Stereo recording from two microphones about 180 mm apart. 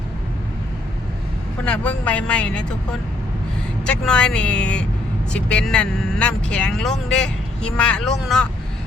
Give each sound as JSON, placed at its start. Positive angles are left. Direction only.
{"t": 1.6, "sound": "speech", "side_deg": 5}
{"t": 4.0, "sound": "speech", "side_deg": 5}